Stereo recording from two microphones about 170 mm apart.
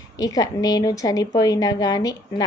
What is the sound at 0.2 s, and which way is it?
A woman's voice, 20° left (ahead or behind).